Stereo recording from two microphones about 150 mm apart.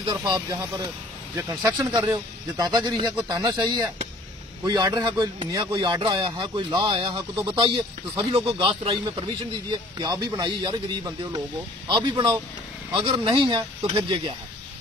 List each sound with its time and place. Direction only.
0.0 s a man's voice: 30° right (ahead or behind)